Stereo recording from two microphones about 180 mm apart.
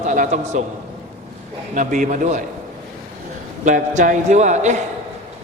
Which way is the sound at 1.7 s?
45° right (ahead or behind).